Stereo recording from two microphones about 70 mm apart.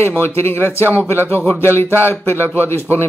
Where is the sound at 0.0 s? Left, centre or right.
Left.